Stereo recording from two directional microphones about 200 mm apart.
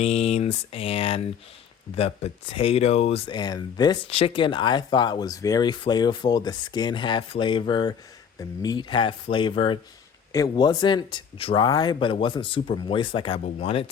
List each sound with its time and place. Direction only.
0.0 s speech: 30° left (ahead or behind)